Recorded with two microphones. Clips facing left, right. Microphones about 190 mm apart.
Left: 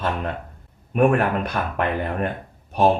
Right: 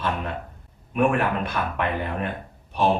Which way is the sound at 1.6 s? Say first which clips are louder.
Left 1 dB; 45° left (ahead or behind).